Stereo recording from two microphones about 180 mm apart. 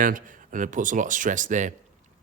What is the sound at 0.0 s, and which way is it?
Speech, 45° right (ahead or behind).